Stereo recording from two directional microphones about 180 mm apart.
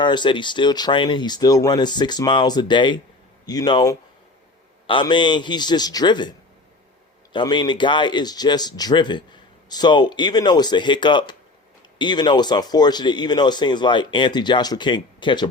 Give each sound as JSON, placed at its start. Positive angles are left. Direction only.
{"t": 0.0, "sound": "a man's voice", "side_deg": 25}
{"t": 7.3, "sound": "a man's voice", "side_deg": 25}